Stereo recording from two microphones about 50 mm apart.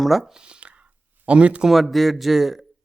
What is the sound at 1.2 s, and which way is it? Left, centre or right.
Speech, right.